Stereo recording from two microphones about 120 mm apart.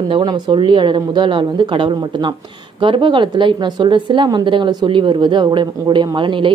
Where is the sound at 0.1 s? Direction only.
40° right (ahead or behind).